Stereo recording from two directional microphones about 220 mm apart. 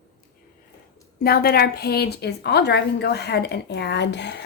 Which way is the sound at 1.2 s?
45° left (ahead or behind).